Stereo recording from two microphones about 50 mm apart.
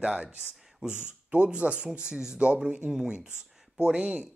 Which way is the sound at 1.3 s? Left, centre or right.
Right.